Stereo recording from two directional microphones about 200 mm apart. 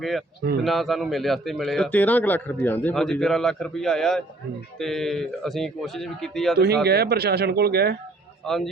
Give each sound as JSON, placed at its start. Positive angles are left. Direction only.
{"t": 0.0, "sound": "speech", "side_deg": 0}
{"t": 6.8, "sound": "speech", "side_deg": -50}
{"t": 8.4, "sound": "speech", "side_deg": 0}